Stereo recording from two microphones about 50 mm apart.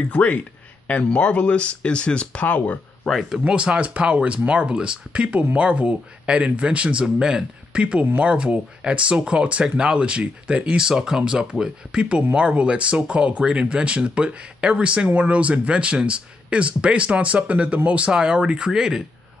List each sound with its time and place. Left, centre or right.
0.1 s speech: left
2.4 s speech: left
3.3 s speech: centre